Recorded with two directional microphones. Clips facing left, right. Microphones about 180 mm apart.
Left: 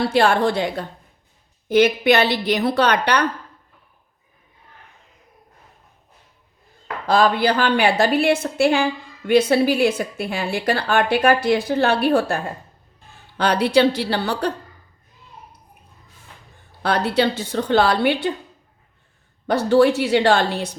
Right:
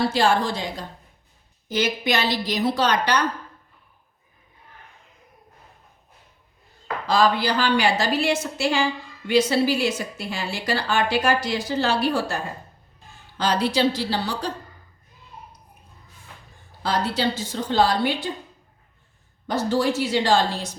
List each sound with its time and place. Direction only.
0.1 s a woman's voice: 60° left (ahead or behind)
7.1 s a woman's voice: 55° left (ahead or behind)
16.8 s a woman's voice: 60° left (ahead or behind)
19.5 s a woman's voice: 65° left (ahead or behind)